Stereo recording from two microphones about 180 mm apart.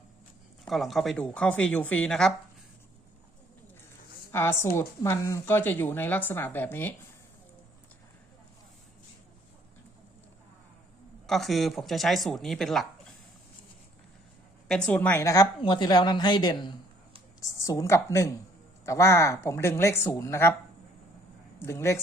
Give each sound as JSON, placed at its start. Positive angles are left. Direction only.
{"t": 0.7, "sound": "speech", "side_deg": 0}
{"t": 4.3, "sound": "a woman's voice", "side_deg": 15}
{"t": 11.3, "sound": "speech", "side_deg": 0}
{"t": 14.8, "sound": "a woman's voice", "side_deg": 10}
{"t": 21.6, "sound": "speech", "side_deg": 15}